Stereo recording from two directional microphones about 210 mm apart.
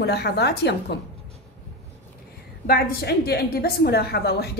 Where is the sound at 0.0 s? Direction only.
50° left (ahead or behind).